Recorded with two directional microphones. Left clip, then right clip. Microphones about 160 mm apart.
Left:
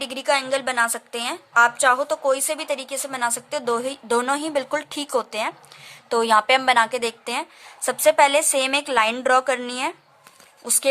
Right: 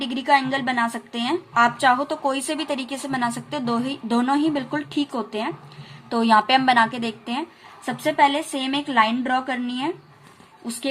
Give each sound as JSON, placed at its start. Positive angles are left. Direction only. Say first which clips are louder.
{"t": 0.0, "sound": "a woman's voice", "louder": "right 3 dB", "side_deg": 40}